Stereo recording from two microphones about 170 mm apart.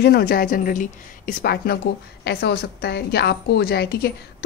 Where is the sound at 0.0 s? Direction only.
65° left (ahead or behind).